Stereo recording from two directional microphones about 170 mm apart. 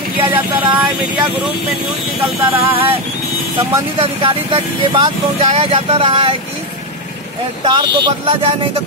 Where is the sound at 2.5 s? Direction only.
10° right (ahead or behind).